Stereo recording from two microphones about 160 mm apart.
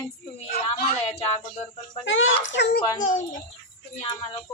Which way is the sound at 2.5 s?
70° left (ahead or behind).